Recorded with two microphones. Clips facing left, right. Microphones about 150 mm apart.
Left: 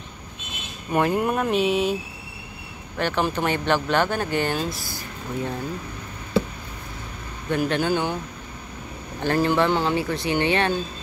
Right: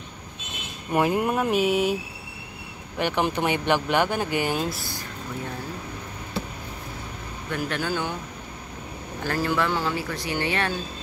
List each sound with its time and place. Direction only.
0.9 s speech: 10° right (ahead or behind)
3.0 s speech: 15° right (ahead or behind)
7.5 s speech: 20° left (ahead or behind)
9.2 s speech: 25° left (ahead or behind)